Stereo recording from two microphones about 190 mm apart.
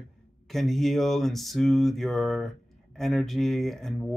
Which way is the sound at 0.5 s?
Centre (ahead or behind).